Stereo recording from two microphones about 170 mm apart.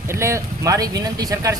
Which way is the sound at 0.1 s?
15° right (ahead or behind).